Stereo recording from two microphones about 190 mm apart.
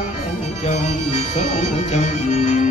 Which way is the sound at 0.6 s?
35° left (ahead or behind).